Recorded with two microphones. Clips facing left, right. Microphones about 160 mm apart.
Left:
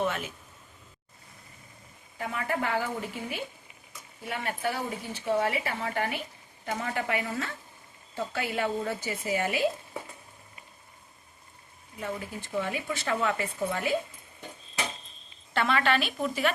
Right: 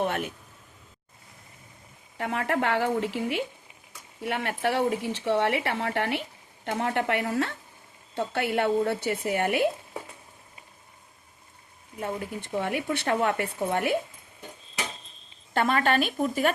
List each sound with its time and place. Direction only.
0.0 s a sound: 60° right (ahead or behind)
2.1 s speech: 70° right (ahead or behind); by 3.4 s 90° right
4.2 s speech: 75° right (ahead or behind)
6.7 s speech: 60° right (ahead or behind)
11.9 s speech: 50° right (ahead or behind)
15.5 s speech: 45° right (ahead or behind)